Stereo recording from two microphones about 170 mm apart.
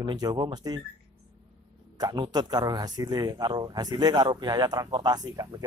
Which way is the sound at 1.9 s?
25° right (ahead or behind).